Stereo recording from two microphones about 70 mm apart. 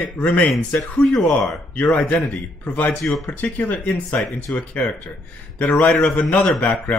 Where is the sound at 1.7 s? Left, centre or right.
Centre.